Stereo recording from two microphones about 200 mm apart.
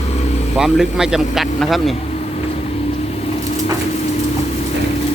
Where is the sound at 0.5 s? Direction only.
Centre (ahead or behind).